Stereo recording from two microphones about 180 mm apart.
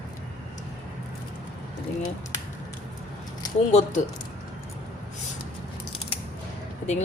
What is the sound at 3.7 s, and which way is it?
Speech, 40° left (ahead or behind).